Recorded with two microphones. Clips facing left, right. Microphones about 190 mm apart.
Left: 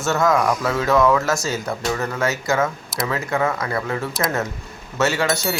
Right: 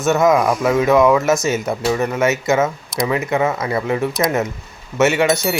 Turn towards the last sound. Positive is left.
turn(degrees=0)  # may be behind; listen again after turning